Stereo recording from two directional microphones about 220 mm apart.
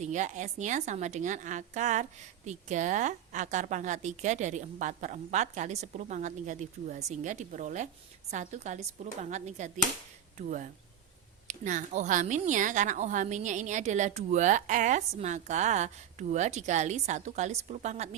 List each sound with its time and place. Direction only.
0.0 s a woman's voice: 35° right (ahead or behind)